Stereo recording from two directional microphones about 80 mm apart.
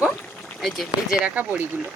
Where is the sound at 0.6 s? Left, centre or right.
Centre.